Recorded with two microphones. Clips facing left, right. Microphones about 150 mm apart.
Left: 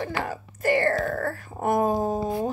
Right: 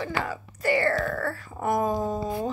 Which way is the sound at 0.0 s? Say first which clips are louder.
Left 1 dB; 45° left (ahead or behind).